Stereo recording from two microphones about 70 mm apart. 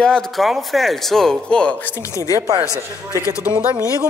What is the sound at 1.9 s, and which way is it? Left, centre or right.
A man's voice, left.